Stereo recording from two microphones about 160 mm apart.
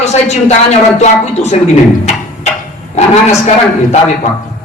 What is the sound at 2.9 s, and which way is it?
Speech, 45° left (ahead or behind).